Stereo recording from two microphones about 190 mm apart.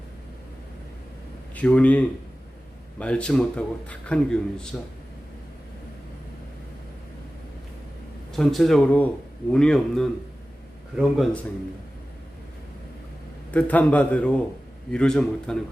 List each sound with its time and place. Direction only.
1.5 s a man's voice: 5° left (ahead or behind)
8.3 s speech: centre (ahead or behind)
13.5 s a man's voice: 10° left (ahead or behind)